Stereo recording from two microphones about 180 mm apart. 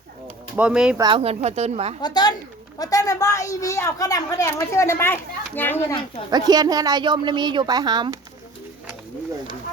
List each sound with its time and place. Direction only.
0.5 s speech: 5° right (ahead or behind)
0.9 s speech: 25° right (ahead or behind)
2.0 s a woman's voice: 25° left (ahead or behind)
6.3 s speech: 20° right (ahead or behind)